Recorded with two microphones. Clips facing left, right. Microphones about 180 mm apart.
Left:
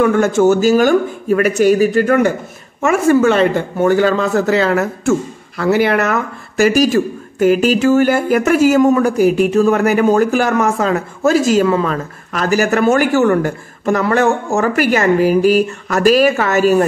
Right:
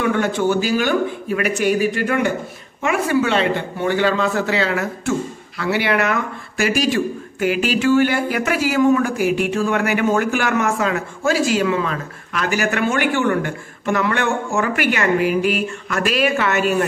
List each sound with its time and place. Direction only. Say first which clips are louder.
0.0 s speech: left 7 dB; 45° left (ahead or behind)